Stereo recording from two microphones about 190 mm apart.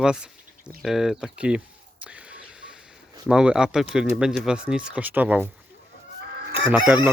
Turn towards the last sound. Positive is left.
turn(degrees=-5)  # may be behind; listen again after turning